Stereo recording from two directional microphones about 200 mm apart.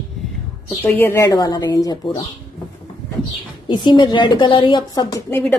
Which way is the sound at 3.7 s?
20° left (ahead or behind).